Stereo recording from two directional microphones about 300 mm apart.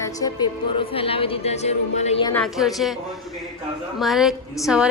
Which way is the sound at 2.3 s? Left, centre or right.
Centre.